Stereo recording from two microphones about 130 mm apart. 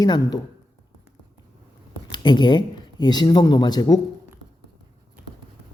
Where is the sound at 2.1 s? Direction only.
35° left (ahead or behind).